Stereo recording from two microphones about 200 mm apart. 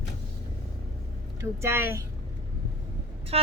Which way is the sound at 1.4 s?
15° right (ahead or behind).